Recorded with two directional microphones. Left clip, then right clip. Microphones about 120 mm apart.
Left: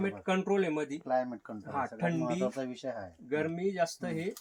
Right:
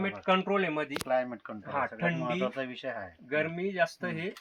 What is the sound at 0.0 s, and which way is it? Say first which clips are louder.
Speech: right 4 dB; 15° right (ahead or behind).